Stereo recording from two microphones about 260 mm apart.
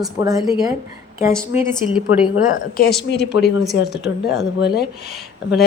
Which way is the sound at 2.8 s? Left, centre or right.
Left.